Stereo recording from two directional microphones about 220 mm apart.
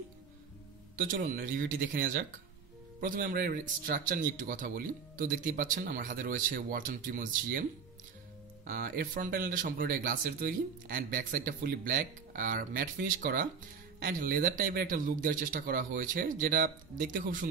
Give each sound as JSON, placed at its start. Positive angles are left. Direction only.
{"t": 0.9, "sound": "speech", "side_deg": -40}
{"t": 8.6, "sound": "speech", "side_deg": -40}